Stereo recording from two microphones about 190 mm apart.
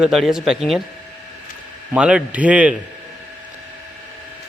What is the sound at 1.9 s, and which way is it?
Speech, 5° right (ahead or behind).